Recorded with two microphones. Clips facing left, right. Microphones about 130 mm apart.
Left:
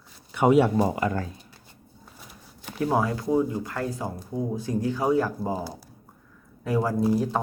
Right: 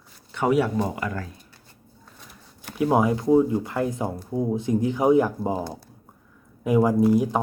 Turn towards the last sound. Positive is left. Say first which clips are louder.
# right 4 dB
turn(degrees=-15)  # may be behind; listen again after turning